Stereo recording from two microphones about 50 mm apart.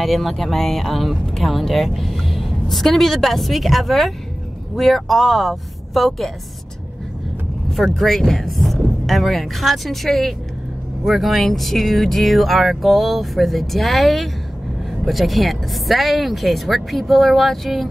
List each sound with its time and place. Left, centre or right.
0.0 s speech: centre
7.7 s speech: centre